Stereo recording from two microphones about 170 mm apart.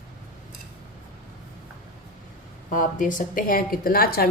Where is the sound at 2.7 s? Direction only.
50° left (ahead or behind).